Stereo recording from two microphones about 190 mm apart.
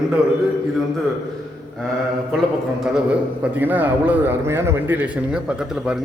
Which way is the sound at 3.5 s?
10° right (ahead or behind).